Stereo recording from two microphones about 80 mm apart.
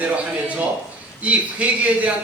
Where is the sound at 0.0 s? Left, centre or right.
Centre.